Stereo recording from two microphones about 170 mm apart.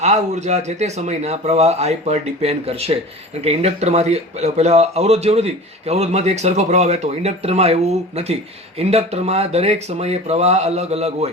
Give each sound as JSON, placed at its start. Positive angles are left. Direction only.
{"t": 0.0, "sound": "speech", "side_deg": -40}